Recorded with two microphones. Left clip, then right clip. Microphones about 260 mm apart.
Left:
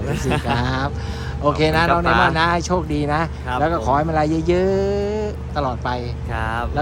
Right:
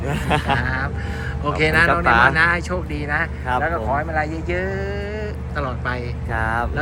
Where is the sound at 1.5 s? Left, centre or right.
Centre.